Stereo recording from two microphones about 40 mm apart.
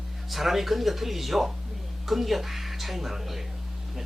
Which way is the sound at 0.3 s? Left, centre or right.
Centre.